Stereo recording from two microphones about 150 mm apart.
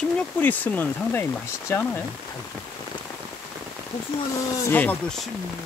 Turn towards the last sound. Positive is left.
turn(degrees=10)  # may be behind; listen again after turning